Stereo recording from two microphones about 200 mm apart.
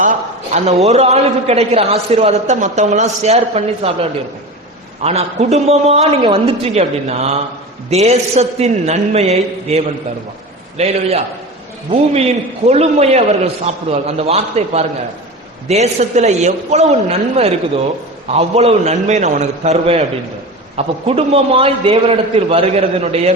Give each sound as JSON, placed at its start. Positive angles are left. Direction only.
{"t": 0.0, "sound": "a man's voice", "side_deg": -35}